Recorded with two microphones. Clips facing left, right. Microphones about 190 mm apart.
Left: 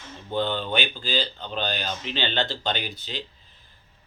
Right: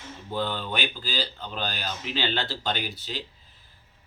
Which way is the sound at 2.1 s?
5° right (ahead or behind).